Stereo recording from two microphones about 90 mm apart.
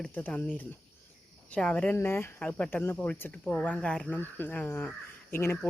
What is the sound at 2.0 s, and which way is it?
Speech, 25° left (ahead or behind).